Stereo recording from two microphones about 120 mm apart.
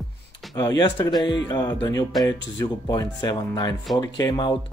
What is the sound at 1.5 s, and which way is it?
Music, 30° left (ahead or behind).